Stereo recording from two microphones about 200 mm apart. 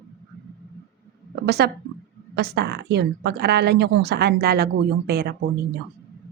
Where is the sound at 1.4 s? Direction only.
55° right (ahead or behind).